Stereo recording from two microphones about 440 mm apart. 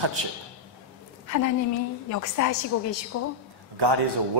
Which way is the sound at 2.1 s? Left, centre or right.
Left.